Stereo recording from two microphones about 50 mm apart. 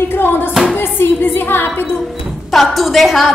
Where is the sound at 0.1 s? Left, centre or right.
Left.